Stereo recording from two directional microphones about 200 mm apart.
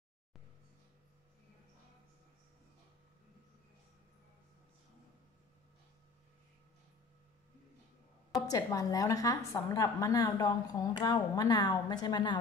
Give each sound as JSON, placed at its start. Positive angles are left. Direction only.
{"t": 8.4, "sound": "a woman's voice", "side_deg": 15}